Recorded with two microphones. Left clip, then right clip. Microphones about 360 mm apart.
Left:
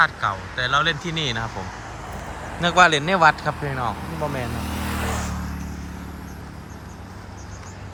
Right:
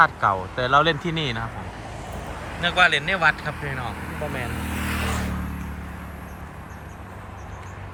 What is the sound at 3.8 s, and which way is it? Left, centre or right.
Vehicle, left.